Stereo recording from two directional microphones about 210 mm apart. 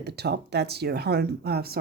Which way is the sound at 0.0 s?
50° right (ahead or behind).